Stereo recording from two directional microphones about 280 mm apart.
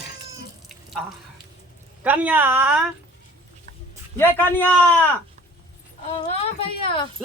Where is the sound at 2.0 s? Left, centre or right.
Centre.